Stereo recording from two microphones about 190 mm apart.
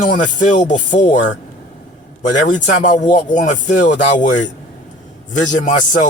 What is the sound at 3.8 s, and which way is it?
Speech, 40° left (ahead or behind).